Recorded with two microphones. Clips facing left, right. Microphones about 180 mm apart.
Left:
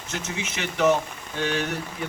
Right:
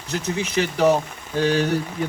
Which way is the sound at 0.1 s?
35° right (ahead or behind).